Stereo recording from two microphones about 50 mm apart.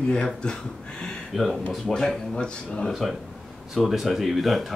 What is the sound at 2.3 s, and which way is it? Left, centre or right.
Speech, centre.